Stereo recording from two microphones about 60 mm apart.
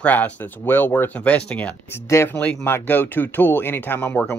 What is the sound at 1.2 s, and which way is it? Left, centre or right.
Speech, centre.